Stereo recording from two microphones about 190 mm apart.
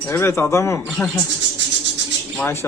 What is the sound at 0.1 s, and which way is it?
Speech, 15° left (ahead or behind).